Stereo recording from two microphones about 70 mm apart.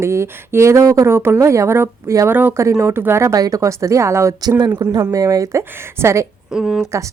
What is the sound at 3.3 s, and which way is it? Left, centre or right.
A woman's voice, right.